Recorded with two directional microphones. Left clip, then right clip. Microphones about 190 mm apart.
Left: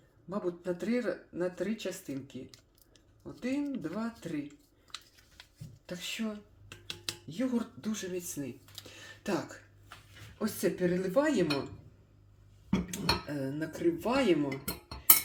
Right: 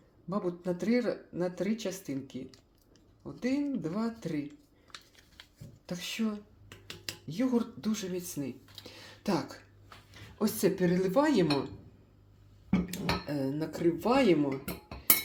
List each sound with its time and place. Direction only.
0.3 s speech: 5° right (ahead or behind)
5.8 s speech: 5° right (ahead or behind)
6.7 s a sound: 25° right (ahead or behind)
7.3 s speech: 5° right (ahead or behind)
10.3 s speech: 10° right (ahead or behind)
12.9 s speech: 5° right (ahead or behind)